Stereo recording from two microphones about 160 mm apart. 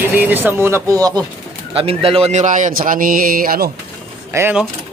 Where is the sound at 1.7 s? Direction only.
35° right (ahead or behind); by 3.7 s 65° right (ahead or behind).